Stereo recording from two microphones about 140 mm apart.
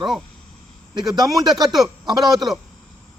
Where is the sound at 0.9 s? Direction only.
30° right (ahead or behind).